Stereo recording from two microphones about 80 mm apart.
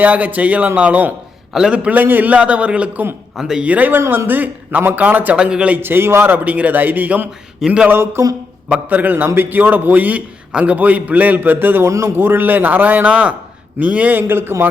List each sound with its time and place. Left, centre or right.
0.0 s a man's voice: right
3.3 s a man's voice: centre
3.7 s a man's voice: right
4.0 s a sound: right
4.3 s a man's voice: right
5.8 s a man's voice: right
7.6 s a man's voice: centre
7.9 s a sound: right
8.7 s a man's voice: right